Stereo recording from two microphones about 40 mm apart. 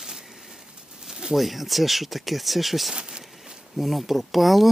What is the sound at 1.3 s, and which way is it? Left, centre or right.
Speech, centre.